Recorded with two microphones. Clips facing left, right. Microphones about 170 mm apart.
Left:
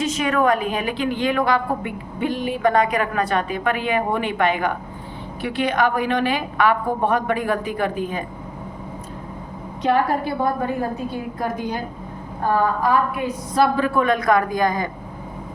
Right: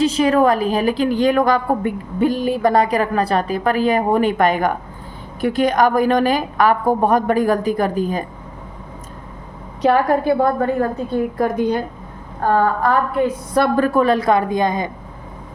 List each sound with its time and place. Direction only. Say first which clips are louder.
0.0 s a woman's voice: right 5 dB; 35° right (ahead or behind)
9.9 s a woman's voice: right 4 dB; 50° right (ahead or behind)
13.6 s a woman's voice: right 3 dB; 45° right (ahead or behind); by 14.8 s 20° right (ahead or behind)